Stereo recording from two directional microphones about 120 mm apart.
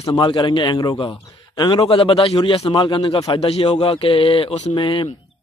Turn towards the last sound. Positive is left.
turn(degrees=45)  # may be behind; listen again after turning